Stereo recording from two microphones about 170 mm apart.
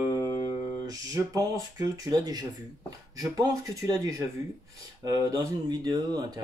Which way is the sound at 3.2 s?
20° right (ahead or behind).